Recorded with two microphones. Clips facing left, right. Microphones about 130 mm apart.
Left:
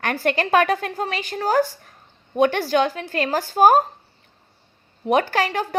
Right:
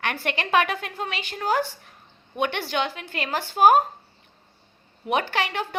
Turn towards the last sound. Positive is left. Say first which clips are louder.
# left 5 dB
turn(degrees=40)  # may be behind; listen again after turning